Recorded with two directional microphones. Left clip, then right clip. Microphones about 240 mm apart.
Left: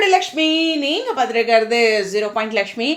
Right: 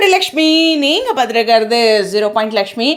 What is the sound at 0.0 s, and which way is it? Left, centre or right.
Speech, right.